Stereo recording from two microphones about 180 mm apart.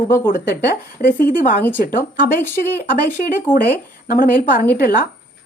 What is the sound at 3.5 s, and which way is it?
Speech, 50° left (ahead or behind).